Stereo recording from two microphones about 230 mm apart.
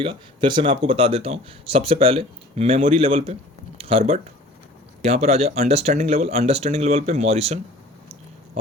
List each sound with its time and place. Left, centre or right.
0.0 s speech: right